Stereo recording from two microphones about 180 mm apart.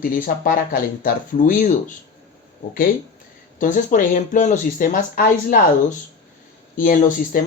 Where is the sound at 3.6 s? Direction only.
45° left (ahead or behind).